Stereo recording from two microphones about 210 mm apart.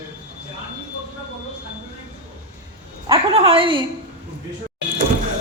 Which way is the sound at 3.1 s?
25° right (ahead or behind).